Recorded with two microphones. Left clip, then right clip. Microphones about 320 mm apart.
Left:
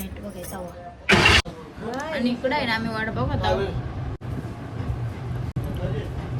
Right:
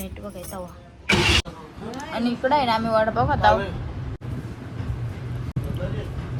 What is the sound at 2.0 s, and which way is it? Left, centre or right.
Speech, centre.